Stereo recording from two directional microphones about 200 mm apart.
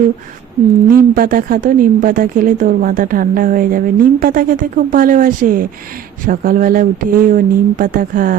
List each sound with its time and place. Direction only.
0.9 s speech: 45° right (ahead or behind)